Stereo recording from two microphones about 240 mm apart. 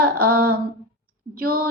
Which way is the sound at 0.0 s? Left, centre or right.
Right.